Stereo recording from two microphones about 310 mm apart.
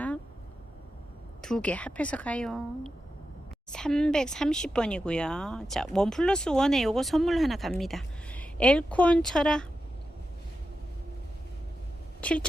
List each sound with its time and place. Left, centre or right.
1.4 s speech: centre
12.2 s speech: centre